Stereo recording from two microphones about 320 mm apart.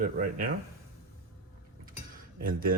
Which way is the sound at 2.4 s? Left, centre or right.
Right.